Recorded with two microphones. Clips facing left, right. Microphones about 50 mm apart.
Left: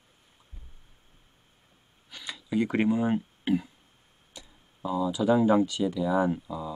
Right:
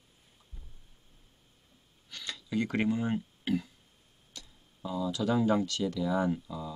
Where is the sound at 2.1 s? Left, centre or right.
Centre.